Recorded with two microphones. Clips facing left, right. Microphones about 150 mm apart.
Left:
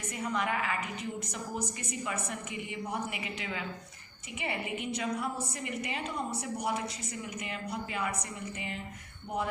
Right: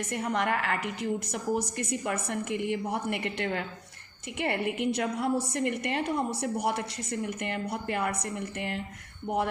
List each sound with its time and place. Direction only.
0.1 s a woman's voice: 70° right (ahead or behind)